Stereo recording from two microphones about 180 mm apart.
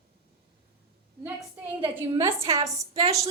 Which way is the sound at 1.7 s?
15° right (ahead or behind).